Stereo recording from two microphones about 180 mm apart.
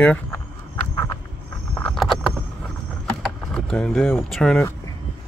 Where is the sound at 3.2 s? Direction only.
5° left (ahead or behind).